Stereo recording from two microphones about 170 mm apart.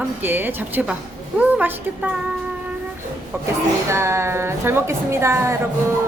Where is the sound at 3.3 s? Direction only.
15° right (ahead or behind).